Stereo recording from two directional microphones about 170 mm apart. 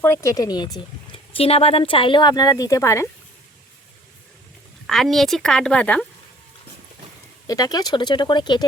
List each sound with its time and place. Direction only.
0.0 s speech: 15° left (ahead or behind)
4.9 s a woman's voice: centre (ahead or behind)
7.4 s speech: 20° left (ahead or behind)